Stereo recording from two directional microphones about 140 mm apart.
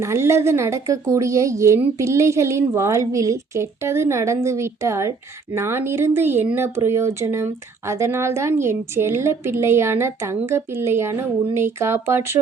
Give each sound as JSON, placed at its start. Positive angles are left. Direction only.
{"t": 0.0, "sound": "speech", "side_deg": -20}